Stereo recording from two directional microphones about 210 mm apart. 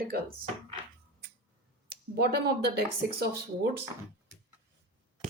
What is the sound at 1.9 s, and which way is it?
Speech, 50° right (ahead or behind).